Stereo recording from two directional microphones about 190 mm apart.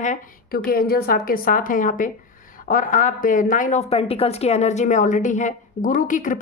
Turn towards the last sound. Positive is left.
turn(degrees=45)  # may be behind; listen again after turning